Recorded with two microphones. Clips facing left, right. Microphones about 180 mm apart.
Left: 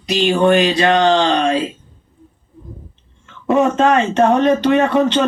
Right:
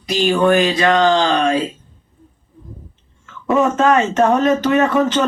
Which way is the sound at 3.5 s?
25° left (ahead or behind).